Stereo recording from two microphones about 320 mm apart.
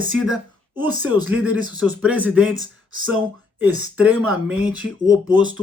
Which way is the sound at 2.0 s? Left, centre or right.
Centre.